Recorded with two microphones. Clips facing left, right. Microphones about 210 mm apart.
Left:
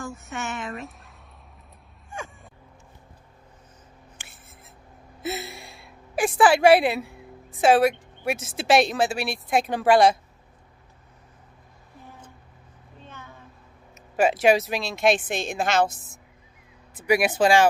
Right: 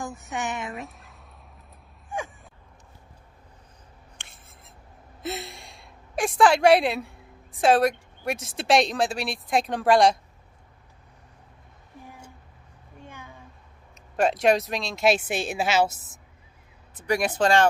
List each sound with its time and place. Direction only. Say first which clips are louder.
0.3 s speech: right 3 dB; 15° right (ahead or behind)
0.7 s speech: left 1 dB; centre (ahead or behind)
4.2 s writing: left 2 dB; 5° left (ahead or behind)
5.2 s a woman's voice: left 2 dB; 5° left (ahead or behind)
13.0 s a sound: right 1 dB; 15° right (ahead or behind)
14.1 s speech: left 2 dB; centre (ahead or behind)
16.9 s speech: left 3 dB; 10° left (ahead or behind)